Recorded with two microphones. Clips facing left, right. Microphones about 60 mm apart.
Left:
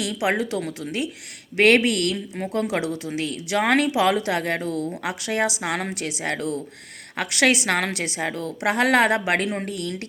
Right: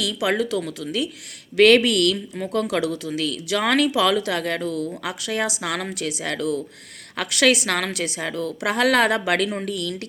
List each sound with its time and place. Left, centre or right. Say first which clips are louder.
0.2 s speech: right 1 dB; left